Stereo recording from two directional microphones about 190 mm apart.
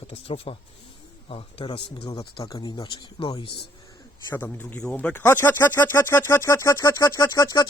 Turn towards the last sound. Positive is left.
turn(degrees=20)  # may be behind; listen again after turning